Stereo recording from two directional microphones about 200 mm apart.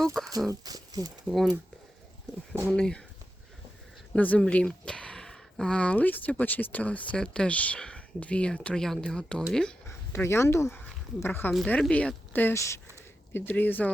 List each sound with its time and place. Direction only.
0.0 s speech: centre (ahead or behind)
0.6 s speech: 20° right (ahead or behind)
1.3 s speech: centre (ahead or behind)
2.6 s speech: 5° left (ahead or behind)
4.1 s speech: 5° left (ahead or behind)